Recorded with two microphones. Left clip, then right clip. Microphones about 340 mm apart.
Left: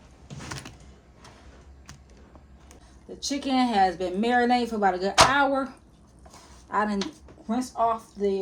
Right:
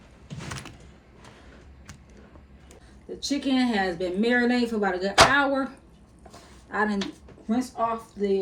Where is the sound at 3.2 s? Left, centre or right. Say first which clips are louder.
Even; centre.